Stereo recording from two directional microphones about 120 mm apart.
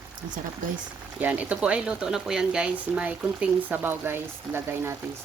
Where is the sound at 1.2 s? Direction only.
10° right (ahead or behind).